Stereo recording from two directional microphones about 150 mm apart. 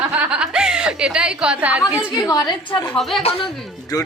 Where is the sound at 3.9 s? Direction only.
25° left (ahead or behind).